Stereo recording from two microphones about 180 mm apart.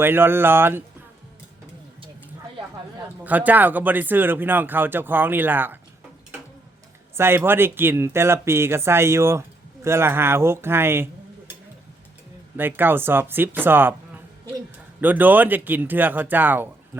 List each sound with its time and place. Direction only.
0.0 s speech: 10° right (ahead or behind)
3.2 s speech: 10° right (ahead or behind)
7.2 s speech: 10° right (ahead or behind)
12.5 s speech: 10° right (ahead or behind)
15.0 s speech: 10° right (ahead or behind)